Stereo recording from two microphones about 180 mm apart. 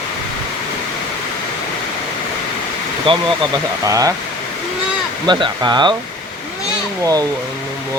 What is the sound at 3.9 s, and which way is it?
Speech, 20° right (ahead or behind).